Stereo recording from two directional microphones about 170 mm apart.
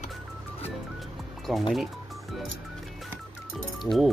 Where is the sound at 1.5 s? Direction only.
5° right (ahead or behind).